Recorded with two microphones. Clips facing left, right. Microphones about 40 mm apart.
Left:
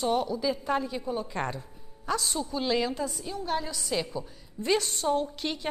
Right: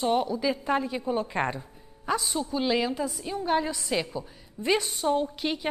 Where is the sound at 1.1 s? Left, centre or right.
Right; by 3.3 s centre.